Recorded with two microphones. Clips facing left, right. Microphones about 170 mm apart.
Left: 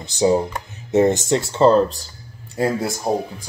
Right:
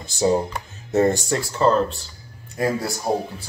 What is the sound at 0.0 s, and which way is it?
Speech, 20° left (ahead or behind).